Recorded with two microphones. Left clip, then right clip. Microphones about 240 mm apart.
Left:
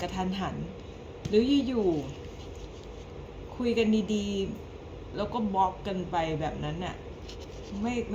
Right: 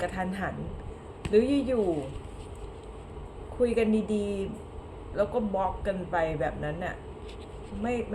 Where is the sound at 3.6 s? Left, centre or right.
Centre.